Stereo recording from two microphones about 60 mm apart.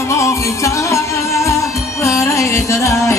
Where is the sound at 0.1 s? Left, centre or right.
Left.